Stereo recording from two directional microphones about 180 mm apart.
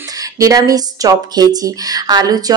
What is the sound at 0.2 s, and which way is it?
Speech, 20° right (ahead or behind).